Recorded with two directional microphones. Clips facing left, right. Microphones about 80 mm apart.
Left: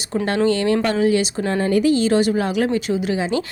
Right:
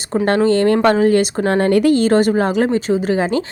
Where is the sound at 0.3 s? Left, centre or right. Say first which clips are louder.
Right 4 dB; right.